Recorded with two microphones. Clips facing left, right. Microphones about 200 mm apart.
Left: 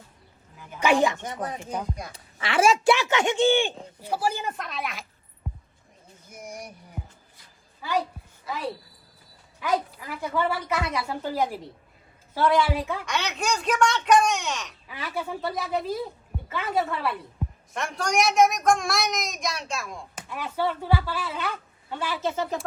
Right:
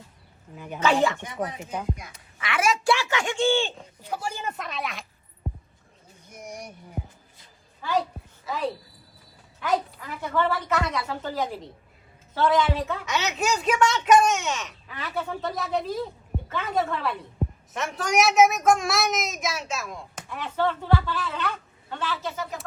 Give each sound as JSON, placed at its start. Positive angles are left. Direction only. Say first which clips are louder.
{"t": 0.8, "sound": "a woman's voice", "louder": "left 1 dB", "side_deg": 15}
{"t": 1.2, "sound": "a woman's voice", "louder": "right 1 dB", "side_deg": 40}
{"t": 6.2, "sound": "a woman's voice", "louder": "even", "side_deg": 0}
{"t": 8.5, "sound": "a woman's voice", "louder": "right 3 dB", "side_deg": 0}
{"t": 13.1, "sound": "a woman's voice", "louder": "right 4 dB", "side_deg": -5}
{"t": 14.8, "sound": "a woman's voice", "louder": "even", "side_deg": 10}
{"t": 22.2, "sound": "a woman's voice", "louder": "left 5 dB", "side_deg": 25}